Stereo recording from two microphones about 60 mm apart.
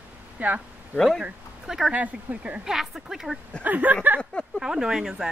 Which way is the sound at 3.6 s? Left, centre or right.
Right.